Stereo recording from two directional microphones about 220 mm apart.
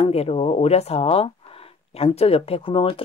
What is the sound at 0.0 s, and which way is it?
Speech, 30° left (ahead or behind).